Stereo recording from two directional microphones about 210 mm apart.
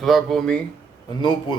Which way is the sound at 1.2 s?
20° left (ahead or behind).